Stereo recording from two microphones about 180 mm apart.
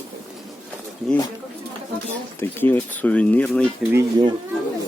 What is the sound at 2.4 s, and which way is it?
Speech, 10° left (ahead or behind).